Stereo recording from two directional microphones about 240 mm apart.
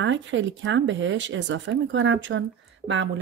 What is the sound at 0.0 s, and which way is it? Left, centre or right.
Speech, right.